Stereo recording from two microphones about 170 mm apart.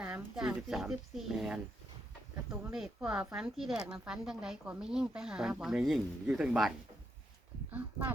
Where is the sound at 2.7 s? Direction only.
5° right (ahead or behind).